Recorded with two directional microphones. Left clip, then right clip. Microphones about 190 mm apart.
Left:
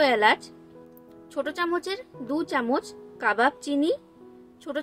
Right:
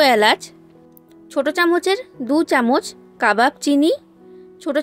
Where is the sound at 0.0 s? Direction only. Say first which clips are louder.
Right 7 dB; 45° right (ahead or behind).